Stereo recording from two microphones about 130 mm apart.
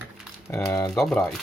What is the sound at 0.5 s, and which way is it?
Speech, 20° left (ahead or behind).